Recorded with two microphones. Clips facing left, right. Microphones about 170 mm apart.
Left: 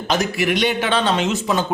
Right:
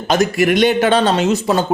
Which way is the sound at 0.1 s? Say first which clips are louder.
Right 6 dB; 50° right (ahead or behind).